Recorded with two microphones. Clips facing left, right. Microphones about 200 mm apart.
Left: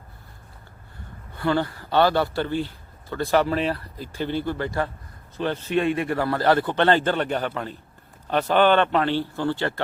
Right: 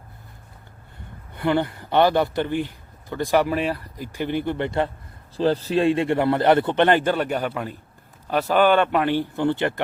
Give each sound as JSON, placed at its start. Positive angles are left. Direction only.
{"t": 1.4, "sound": "a man's voice", "side_deg": -20}
{"t": 5.4, "sound": "a man's voice", "side_deg": -35}